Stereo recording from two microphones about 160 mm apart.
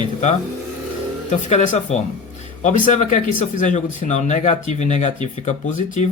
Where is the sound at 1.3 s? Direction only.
45° left (ahead or behind).